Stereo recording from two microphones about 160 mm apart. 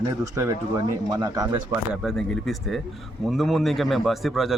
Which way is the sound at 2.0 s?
Centre (ahead or behind).